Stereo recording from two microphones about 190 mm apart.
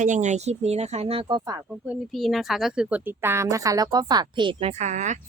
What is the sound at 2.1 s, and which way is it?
Speech, centre (ahead or behind).